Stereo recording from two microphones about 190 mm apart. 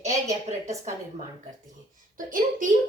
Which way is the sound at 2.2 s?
45° right (ahead or behind).